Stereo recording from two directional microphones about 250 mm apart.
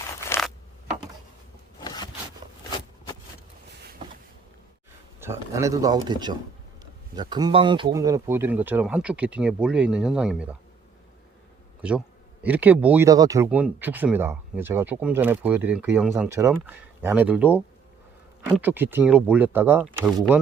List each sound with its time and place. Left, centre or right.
0.3 s zipper: centre
1.8 s a sound: centre
5.2 s speech: centre
11.8 s speech: centre